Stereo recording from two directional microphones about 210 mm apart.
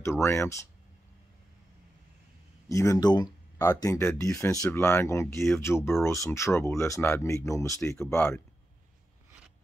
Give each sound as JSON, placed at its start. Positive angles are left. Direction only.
{"t": 0.0, "sound": "speech", "side_deg": 10}
{"t": 2.7, "sound": "speech", "side_deg": 15}